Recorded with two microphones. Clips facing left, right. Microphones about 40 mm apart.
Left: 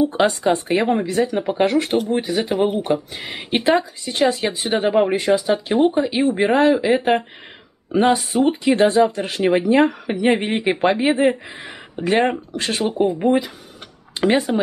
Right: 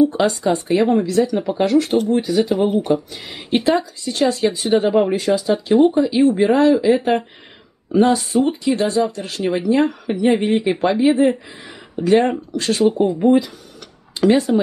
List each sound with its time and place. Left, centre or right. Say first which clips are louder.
0.0 s speech: right 1 dB; left